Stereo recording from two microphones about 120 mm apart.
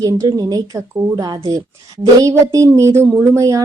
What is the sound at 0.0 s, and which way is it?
A woman's voice, 30° right (ahead or behind).